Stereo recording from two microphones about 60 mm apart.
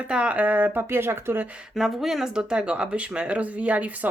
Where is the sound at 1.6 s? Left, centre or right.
Centre; by 4.1 s right.